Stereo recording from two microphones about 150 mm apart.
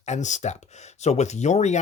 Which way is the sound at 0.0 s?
50° left (ahead or behind).